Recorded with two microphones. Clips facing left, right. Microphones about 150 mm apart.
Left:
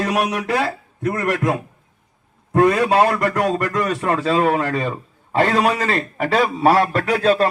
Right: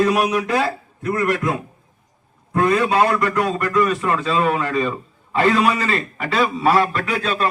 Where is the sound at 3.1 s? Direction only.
50° left (ahead or behind).